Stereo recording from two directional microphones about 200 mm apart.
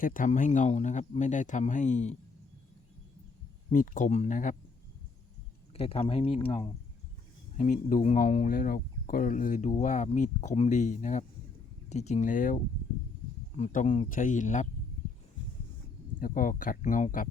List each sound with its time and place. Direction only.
0.0 s speech: 40° left (ahead or behind)
3.7 s speech: 40° left (ahead or behind)
5.7 s speech: 30° left (ahead or behind)
7.5 s speech: 40° left (ahead or behind)
16.2 s speech: 45° left (ahead or behind)